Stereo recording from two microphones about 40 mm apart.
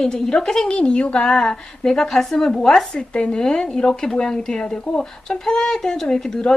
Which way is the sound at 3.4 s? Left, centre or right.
Centre.